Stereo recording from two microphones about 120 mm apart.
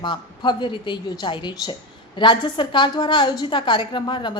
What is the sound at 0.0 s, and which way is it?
A woman's voice, 40° left (ahead or behind).